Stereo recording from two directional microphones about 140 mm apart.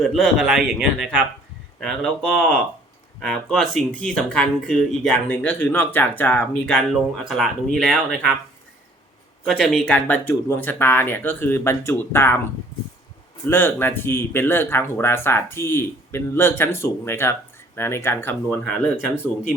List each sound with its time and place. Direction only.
0.0 s speech: centre (ahead or behind)
1.8 s speech: 5° left (ahead or behind)
6.9 s speech: centre (ahead or behind)
9.5 s speech: centre (ahead or behind); by 12.4 s 15° left (ahead or behind)
13.5 s speech: 15° left (ahead or behind)